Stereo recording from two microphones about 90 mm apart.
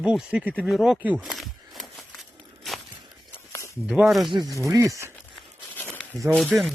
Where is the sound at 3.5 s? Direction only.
35° left (ahead or behind).